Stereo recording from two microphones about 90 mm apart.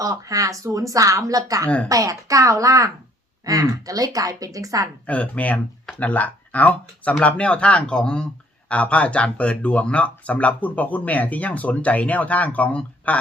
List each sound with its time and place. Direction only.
0.0 s speech: 40° right (ahead or behind)
5.0 s speech: 15° left (ahead or behind)